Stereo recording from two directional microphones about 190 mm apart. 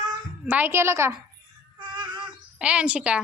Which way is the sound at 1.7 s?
25° right (ahead or behind).